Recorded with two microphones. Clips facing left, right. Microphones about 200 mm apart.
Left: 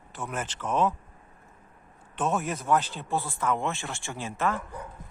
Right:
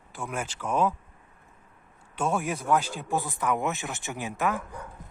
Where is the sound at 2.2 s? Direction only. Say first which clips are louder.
Even; 10° right (ahead or behind).